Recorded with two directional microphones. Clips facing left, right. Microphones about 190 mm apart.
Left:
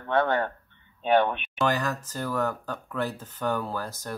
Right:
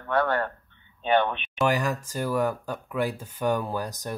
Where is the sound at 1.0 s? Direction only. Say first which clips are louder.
Left 1 dB; 10° left (ahead or behind).